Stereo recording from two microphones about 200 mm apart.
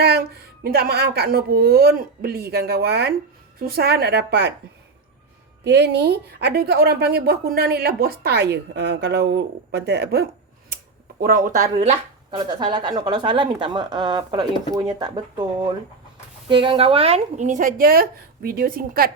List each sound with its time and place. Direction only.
0.6 s a woman's voice: 50° right (ahead or behind)
5.6 s a woman's voice: 55° right (ahead or behind)
11.2 s speech: 45° right (ahead or behind)
12.4 s a woman's voice: 20° right (ahead or behind); by 19.1 s 45° right (ahead or behind)